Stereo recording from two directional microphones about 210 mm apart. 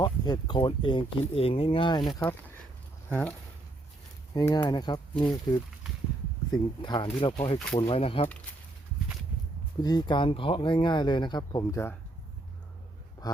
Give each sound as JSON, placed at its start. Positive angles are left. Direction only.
{"t": 0.0, "sound": "speech", "side_deg": 20}
{"t": 3.1, "sound": "speech", "side_deg": 5}
{"t": 4.4, "sound": "speech", "side_deg": 15}
{"t": 9.8, "sound": "speech", "side_deg": 20}
{"t": 13.2, "sound": "speech", "side_deg": 20}